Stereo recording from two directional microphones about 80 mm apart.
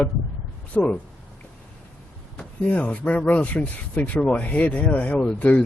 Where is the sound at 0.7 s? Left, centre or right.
Centre.